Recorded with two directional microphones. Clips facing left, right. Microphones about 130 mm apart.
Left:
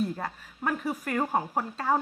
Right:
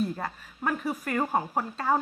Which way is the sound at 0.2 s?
20° left (ahead or behind).